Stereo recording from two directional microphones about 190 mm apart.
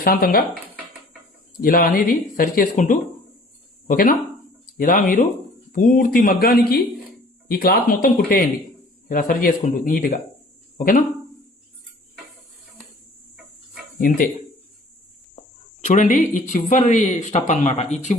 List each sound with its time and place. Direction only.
0.0 s speech: 50° left (ahead or behind)
1.6 s speech: 50° left (ahead or behind)
14.0 s speech: 50° left (ahead or behind)
15.4 s speech: 40° left (ahead or behind)